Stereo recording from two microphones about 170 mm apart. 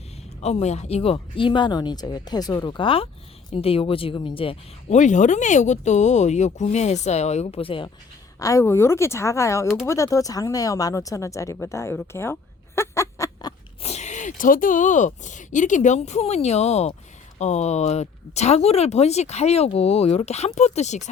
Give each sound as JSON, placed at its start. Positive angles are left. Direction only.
{"t": 0.4, "sound": "speech", "side_deg": 40}
{"t": 4.9, "sound": "speech", "side_deg": 45}
{"t": 8.4, "sound": "speech", "side_deg": 20}
{"t": 11.9, "sound": "a sound", "side_deg": 15}
{"t": 13.8, "sound": "speech", "side_deg": 40}